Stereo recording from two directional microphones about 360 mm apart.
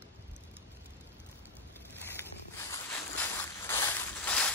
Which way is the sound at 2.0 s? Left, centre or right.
Centre.